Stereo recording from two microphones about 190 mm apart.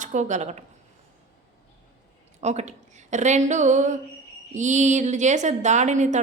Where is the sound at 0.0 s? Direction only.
40° right (ahead or behind).